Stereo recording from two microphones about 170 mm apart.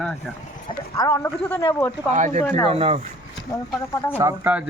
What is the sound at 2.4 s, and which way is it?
Speech, 10° left (ahead or behind).